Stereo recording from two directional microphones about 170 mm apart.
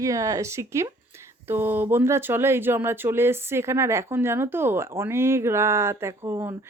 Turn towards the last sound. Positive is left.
turn(degrees=-20)  # may be behind; listen again after turning